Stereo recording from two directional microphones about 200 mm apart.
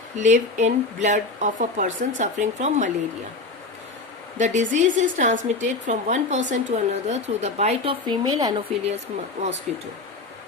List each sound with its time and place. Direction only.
0.2 s speech: 35° right (ahead or behind)
4.4 s speech: 35° right (ahead or behind); by 8.5 s 20° right (ahead or behind)
9.7 s speech: centre (ahead or behind)